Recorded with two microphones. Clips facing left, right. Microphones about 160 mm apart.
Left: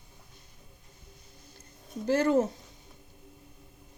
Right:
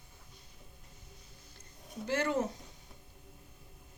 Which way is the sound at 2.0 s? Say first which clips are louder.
Left 7 dB; 35° left (ahead or behind).